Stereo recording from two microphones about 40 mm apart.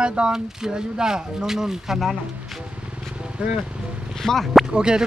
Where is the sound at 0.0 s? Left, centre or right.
Right.